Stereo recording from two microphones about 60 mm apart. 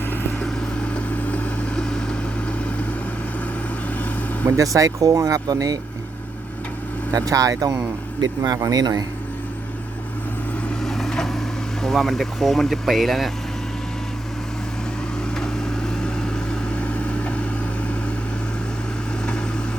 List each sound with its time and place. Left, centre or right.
0.8 s vehicle: left
1.7 s vehicle: centre
4.4 s speech: right
7.1 s speech: right
10.8 s vehicle: centre
11.8 s speech: centre
15.4 s vehicle: centre